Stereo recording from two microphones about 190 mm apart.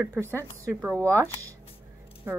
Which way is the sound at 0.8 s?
15° right (ahead or behind).